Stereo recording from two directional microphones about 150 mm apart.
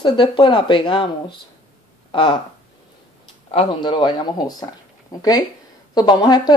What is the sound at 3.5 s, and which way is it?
Speech, 35° left (ahead or behind).